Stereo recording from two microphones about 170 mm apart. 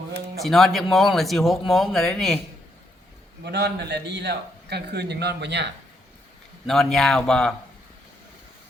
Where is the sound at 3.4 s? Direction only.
80° right.